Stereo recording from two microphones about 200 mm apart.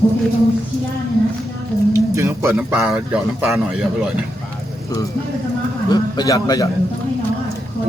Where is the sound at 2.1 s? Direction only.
15° right (ahead or behind).